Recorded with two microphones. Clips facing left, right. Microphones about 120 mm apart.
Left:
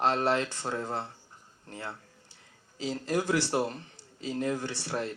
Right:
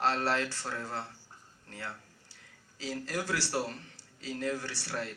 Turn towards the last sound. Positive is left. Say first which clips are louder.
# left 5 dB
turn(degrees=20)  # may be behind; listen again after turning